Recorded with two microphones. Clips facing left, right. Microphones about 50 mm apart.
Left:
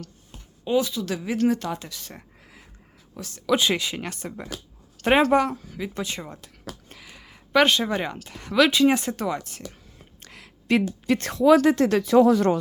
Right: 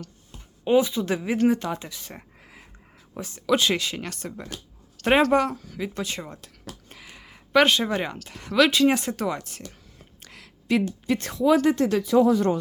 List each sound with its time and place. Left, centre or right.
0.6 s speech: right
3.4 s a woman's voice: centre
10.2 s a sound: centre
10.7 s speech: left
11.4 s speech: left